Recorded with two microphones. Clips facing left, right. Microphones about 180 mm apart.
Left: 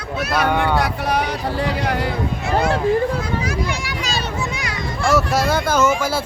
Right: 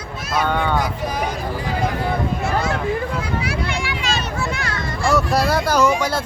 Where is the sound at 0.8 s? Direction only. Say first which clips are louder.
Left 3 dB; 70° left (ahead or behind).